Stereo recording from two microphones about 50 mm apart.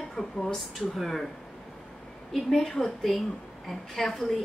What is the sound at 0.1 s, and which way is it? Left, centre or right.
A woman's voice, centre.